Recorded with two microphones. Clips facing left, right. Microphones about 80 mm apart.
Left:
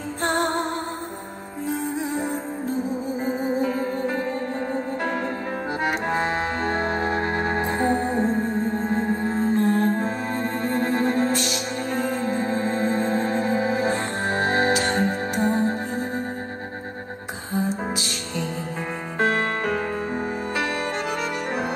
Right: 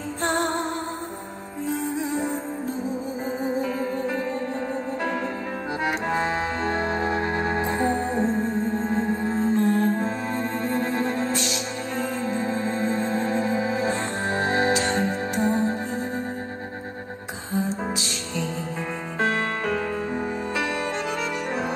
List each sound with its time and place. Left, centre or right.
0.2 s music: left
3.3 s music: left
5.9 s music: left
17.5 s music: left